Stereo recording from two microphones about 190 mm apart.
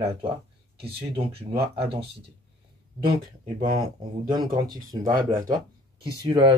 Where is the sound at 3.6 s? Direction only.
25° right (ahead or behind).